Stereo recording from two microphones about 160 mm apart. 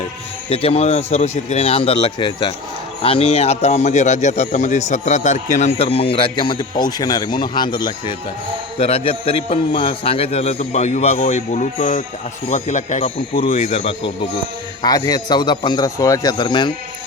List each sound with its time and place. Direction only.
0.5 s a man's voice: 40° left (ahead or behind)
14.8 s a man's voice: 25° left (ahead or behind)